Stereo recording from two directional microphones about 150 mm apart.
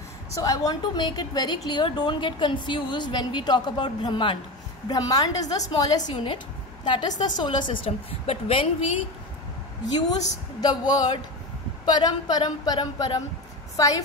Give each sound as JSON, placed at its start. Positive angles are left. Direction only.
{"t": 0.3, "sound": "a woman's voice", "side_deg": 25}
{"t": 10.6, "sound": "speech", "side_deg": 30}